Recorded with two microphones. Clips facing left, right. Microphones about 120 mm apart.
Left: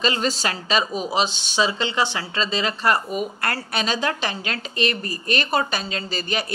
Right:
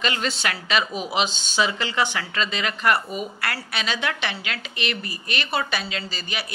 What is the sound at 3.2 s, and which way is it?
Speech, 45° left (ahead or behind).